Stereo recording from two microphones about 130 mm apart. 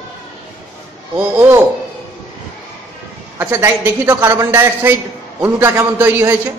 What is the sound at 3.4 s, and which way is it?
A man's voice, 20° right (ahead or behind).